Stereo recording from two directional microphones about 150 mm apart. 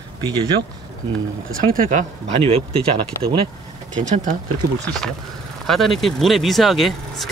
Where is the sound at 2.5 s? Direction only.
40° right (ahead or behind).